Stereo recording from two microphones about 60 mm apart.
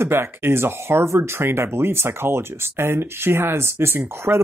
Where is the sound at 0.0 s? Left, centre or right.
Right.